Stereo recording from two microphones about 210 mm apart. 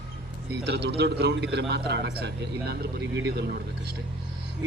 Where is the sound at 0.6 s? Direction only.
50° right (ahead or behind).